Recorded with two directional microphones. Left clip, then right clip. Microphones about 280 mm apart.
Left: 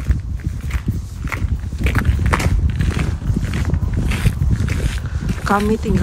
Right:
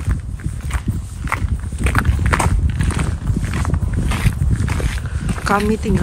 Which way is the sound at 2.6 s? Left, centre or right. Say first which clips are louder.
Right 1 dB; right.